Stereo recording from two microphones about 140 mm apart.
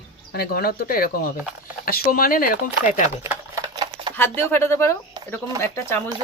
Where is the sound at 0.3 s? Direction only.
90° left.